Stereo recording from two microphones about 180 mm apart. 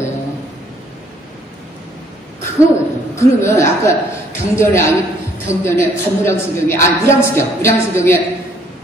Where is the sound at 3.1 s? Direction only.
15° left (ahead or behind).